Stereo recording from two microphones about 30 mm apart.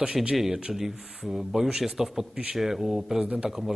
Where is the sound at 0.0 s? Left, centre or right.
Right.